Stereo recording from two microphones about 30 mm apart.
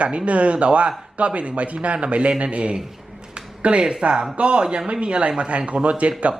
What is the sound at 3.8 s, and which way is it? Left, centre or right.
Speech, right.